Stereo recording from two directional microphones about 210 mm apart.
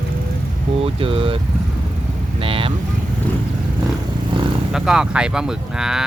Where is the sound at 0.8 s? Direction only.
25° right (ahead or behind).